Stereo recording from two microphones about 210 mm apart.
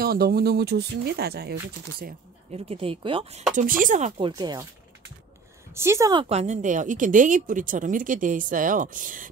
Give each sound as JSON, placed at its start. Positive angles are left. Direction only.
{"t": 0.0, "sound": "speech", "side_deg": -45}
{"t": 2.5, "sound": "speech", "side_deg": -30}
{"t": 3.5, "sound": "speech", "side_deg": -40}
{"t": 4.3, "sound": "speech", "side_deg": -20}
{"t": 5.8, "sound": "speech", "side_deg": -15}
{"t": 6.2, "sound": "speech", "side_deg": -30}